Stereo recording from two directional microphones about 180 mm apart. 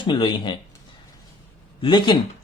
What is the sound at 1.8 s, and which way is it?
Speech, 25° left (ahead or behind).